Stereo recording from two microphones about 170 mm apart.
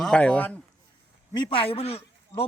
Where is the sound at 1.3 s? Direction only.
30° left (ahead or behind).